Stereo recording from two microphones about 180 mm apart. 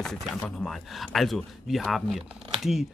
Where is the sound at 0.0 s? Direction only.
Centre (ahead or behind).